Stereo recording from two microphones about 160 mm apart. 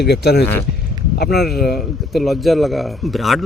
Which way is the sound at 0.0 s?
90° left.